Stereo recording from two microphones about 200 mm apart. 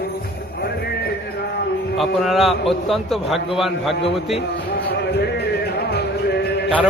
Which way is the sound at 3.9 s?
30° left (ahead or behind).